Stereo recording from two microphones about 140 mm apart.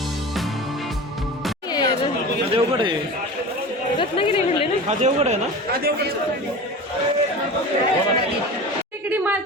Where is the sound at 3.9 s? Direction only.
40° left (ahead or behind).